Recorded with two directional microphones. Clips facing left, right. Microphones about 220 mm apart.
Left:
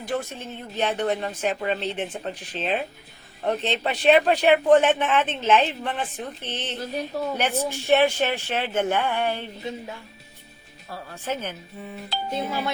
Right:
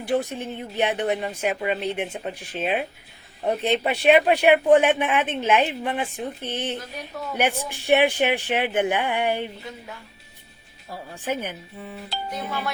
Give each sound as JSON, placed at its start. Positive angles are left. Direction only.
{"t": 0.1, "sound": "speech", "side_deg": -15}
{"t": 10.9, "sound": "speech", "side_deg": -15}
{"t": 12.3, "sound": "speech", "side_deg": 25}